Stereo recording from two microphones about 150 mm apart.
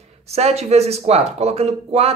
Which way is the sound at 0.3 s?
45° right (ahead or behind).